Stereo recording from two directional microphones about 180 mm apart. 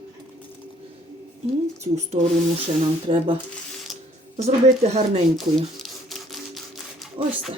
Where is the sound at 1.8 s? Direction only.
40° right (ahead or behind).